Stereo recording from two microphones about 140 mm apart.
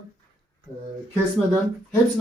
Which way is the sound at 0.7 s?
20° left (ahead or behind).